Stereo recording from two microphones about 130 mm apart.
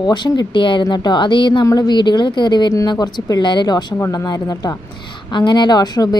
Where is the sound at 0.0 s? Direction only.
35° left (ahead or behind).